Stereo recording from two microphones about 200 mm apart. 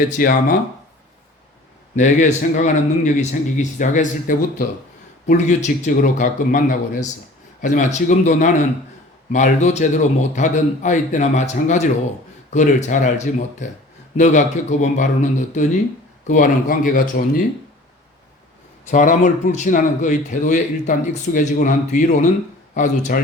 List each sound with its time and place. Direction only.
0.2 s speech: 45° left (ahead or behind)
2.0 s a man's voice: 40° left (ahead or behind)
18.9 s a man's voice: 40° left (ahead or behind)